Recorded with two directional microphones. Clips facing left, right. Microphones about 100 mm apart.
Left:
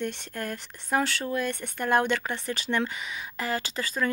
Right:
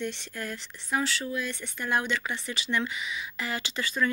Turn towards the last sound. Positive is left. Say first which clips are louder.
# even
turn(degrees=40)  # may be behind; listen again after turning